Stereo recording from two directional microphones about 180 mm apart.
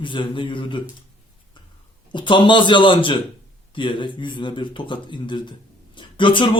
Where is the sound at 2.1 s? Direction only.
25° left (ahead or behind).